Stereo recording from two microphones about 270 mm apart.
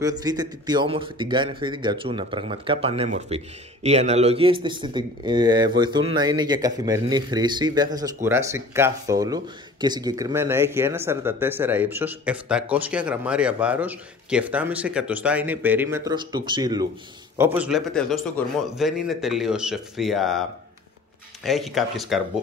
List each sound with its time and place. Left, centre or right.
0.0 s speech: centre
21.5 s speech: centre